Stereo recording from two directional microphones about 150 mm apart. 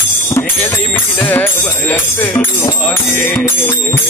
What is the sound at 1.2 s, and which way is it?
Speech, 10° left (ahead or behind).